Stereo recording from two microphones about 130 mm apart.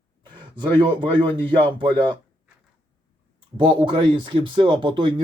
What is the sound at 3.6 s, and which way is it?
Speech, 40° right (ahead or behind).